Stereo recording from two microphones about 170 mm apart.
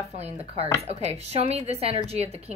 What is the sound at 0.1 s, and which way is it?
Speech, 40° right (ahead or behind).